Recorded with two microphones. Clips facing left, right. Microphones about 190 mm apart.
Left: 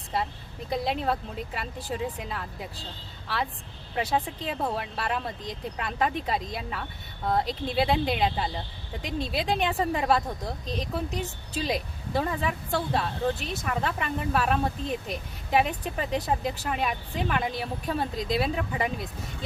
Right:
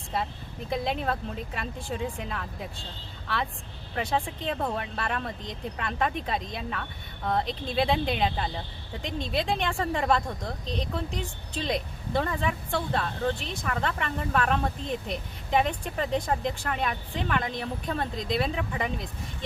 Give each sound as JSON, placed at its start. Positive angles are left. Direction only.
{"t": 0.7, "sound": "a woman's voice", "side_deg": 0}
{"t": 3.9, "sound": "a woman's voice", "side_deg": 5}